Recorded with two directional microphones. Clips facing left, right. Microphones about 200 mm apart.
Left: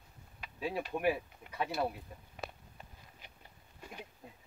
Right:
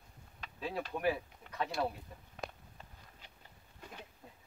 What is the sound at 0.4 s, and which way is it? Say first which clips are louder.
Speech: left 2 dB; 10° left (ahead or behind).